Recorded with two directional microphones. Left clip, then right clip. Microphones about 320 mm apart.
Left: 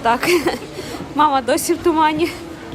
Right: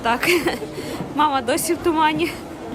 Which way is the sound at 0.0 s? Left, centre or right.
Centre.